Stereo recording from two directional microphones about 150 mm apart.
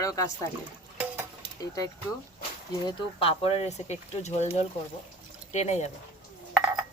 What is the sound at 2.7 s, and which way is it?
Speech, 35° left (ahead or behind).